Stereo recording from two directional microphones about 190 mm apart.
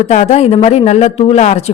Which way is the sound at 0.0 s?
40° left (ahead or behind).